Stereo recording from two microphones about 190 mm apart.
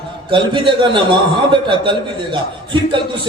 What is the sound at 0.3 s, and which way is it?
A man's voice, 25° right (ahead or behind).